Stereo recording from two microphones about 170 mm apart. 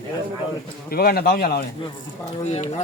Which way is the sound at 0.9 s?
60° left (ahead or behind).